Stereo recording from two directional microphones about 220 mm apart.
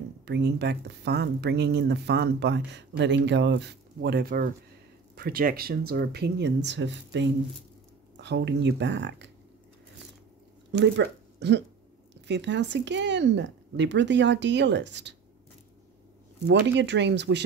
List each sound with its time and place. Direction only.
0.2 s speech: 50° right (ahead or behind)
10.7 s speech: 50° right (ahead or behind)
16.4 s speech: 55° right (ahead or behind)